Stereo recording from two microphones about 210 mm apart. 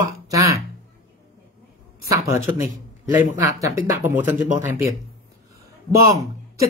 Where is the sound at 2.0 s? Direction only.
15° right (ahead or behind).